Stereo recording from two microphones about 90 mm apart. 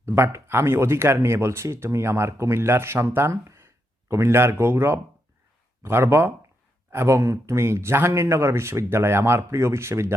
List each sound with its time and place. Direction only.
0.0 s speech: 30° right (ahead or behind)
3.4 s a sound: 35° right (ahead or behind)
4.1 s speech: 30° right (ahead or behind)